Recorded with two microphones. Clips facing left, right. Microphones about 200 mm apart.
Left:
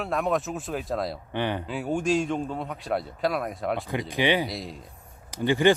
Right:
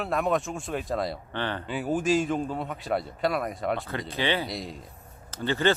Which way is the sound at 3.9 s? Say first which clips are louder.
Left 4 dB; 15° left (ahead or behind).